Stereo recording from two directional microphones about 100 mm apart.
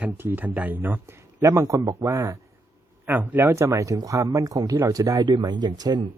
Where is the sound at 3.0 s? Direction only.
15° right (ahead or behind); by 5.2 s 35° right (ahead or behind).